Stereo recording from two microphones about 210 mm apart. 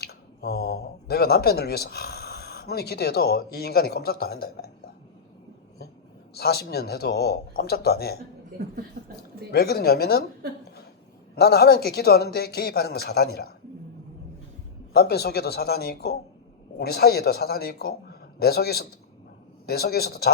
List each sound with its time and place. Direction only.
0.0 s speech: 50° left (ahead or behind)
6.3 s a man's voice: 50° left (ahead or behind)
8.6 s speech: 50° right (ahead or behind)
9.5 s a man's voice: 50° left (ahead or behind)
11.3 s a man's voice: 50° left (ahead or behind)
14.9 s a man's voice: 50° left (ahead or behind)